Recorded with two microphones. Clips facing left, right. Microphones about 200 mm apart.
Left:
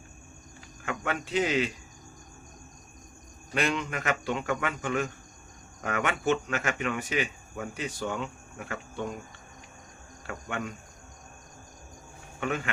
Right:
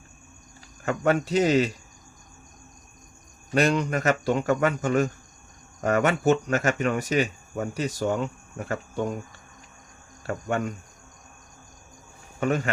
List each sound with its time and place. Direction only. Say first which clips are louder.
0.9 s speech: right 9 dB; 40° right (ahead or behind)
3.5 s speech: right 7 dB; 40° right (ahead or behind)
10.2 s speech: right 8 dB; 40° right (ahead or behind)
12.4 s speech: right 6 dB; 40° right (ahead or behind)